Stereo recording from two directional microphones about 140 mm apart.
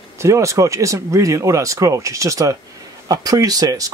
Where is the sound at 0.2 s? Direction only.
20° right (ahead or behind).